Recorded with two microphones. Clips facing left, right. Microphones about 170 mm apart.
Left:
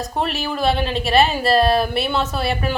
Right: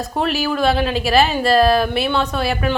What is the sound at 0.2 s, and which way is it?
A woman's voice, centre (ahead or behind).